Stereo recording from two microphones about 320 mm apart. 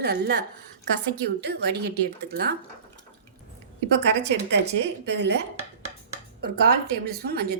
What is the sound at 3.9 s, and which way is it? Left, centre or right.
A woman's voice, right.